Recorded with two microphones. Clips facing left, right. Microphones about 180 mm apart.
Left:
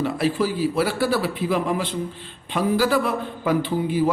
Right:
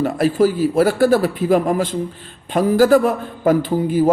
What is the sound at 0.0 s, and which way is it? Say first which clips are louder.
A man's voice: right 6 dB; 45° right (ahead or behind).